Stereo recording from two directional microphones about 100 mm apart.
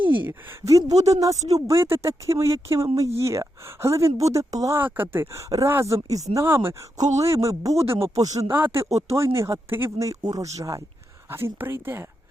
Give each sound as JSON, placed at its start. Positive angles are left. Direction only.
{"t": 0.7, "sound": "speech", "side_deg": -35}
{"t": 4.8, "sound": "speech", "side_deg": -20}
{"t": 7.9, "sound": "speech", "side_deg": -70}
{"t": 8.2, "sound": "speech", "side_deg": -35}
{"t": 8.4, "sound": "speech", "side_deg": -20}
{"t": 10.1, "sound": "speech", "side_deg": -35}
{"t": 11.3, "sound": "speech", "side_deg": -25}